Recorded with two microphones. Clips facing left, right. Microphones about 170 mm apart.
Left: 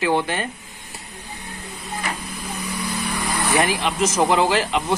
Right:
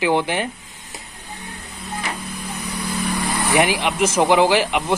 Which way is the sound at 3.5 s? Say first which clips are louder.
Right 2 dB; 15° right (ahead or behind).